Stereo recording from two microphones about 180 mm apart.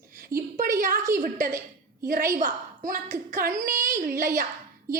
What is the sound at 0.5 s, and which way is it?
A woman's voice, 50° right (ahead or behind).